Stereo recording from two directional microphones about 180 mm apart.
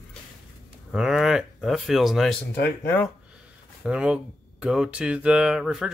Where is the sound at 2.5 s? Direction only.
65° left (ahead or behind).